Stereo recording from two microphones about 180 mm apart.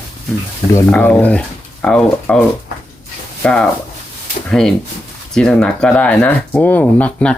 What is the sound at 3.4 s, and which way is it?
Speech, 5° left (ahead or behind).